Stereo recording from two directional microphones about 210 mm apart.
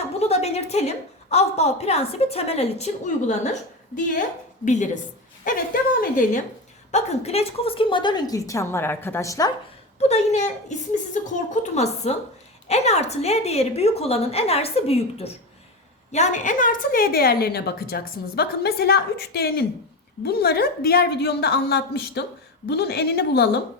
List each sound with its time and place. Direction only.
0.2 s a woman's voice: 30° left (ahead or behind)
4.6 s a woman's voice: 35° left (ahead or behind)
6.9 s a woman's voice: 30° left (ahead or behind); by 9.5 s 15° left (ahead or behind)
10.0 s a woman's voice: 30° left (ahead or behind); by 23.5 s 50° left (ahead or behind)